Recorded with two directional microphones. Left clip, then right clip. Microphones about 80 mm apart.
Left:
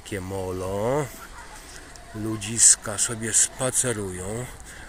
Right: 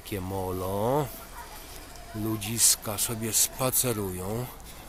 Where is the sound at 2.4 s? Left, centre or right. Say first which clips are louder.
Left 7 dB; centre.